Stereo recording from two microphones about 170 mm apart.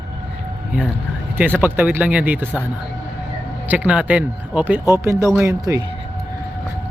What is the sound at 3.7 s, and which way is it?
Speech, 5° right (ahead or behind).